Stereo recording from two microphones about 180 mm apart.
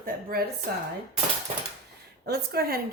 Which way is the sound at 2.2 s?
60° right (ahead or behind).